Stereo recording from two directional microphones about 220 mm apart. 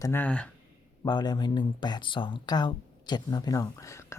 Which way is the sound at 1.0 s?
20° left (ahead or behind).